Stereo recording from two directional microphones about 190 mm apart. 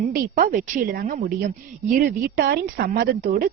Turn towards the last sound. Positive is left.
turn(degrees=-50)  # may be behind; listen again after turning